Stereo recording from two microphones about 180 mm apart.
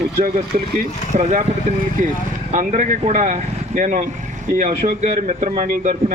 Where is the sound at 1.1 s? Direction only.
40° right (ahead or behind).